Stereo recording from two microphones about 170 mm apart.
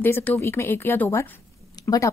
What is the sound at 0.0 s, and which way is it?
Speech, 10° left (ahead or behind).